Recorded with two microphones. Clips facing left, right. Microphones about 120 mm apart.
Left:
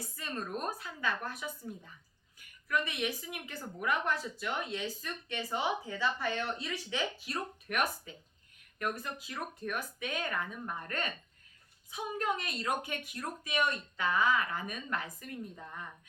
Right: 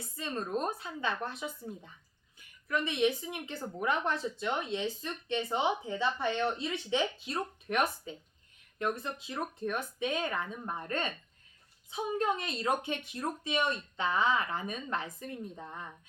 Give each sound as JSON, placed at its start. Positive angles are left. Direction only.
{"t": 0.2, "sound": "speech", "side_deg": -25}